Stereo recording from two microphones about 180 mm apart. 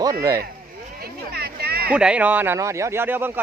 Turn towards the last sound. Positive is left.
turn(degrees=-10)  # may be behind; listen again after turning